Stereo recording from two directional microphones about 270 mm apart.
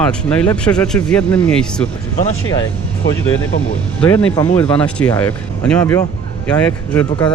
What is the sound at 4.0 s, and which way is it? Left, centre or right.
Speech, centre.